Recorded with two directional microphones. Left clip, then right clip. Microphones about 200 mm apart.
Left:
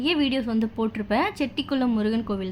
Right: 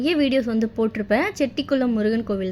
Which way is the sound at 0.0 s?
15° right (ahead or behind).